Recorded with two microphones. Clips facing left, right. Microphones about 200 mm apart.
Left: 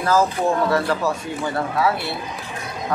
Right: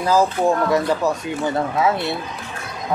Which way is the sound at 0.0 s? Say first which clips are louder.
Right 2 dB; 15° right (ahead or behind).